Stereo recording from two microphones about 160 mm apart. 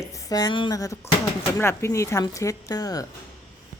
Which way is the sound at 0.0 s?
20° left (ahead or behind).